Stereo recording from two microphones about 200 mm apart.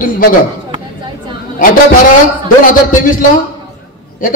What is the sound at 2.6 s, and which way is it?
Speech, 40° left (ahead or behind).